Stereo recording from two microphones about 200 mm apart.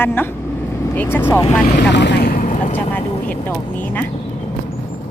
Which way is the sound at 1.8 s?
60° left (ahead or behind).